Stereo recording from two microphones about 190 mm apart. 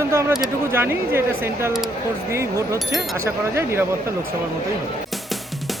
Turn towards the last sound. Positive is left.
turn(degrees=-15)  # may be behind; listen again after turning